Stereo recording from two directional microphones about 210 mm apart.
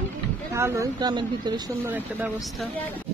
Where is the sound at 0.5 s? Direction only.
15° right (ahead or behind).